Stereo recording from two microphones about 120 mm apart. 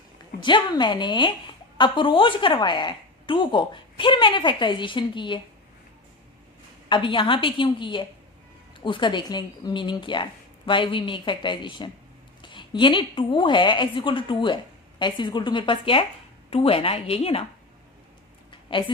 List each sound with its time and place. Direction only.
0.4 s a woman's voice: 40° left (ahead or behind)
6.8 s a woman's voice: 40° left (ahead or behind)
18.5 s a sound: 45° left (ahead or behind)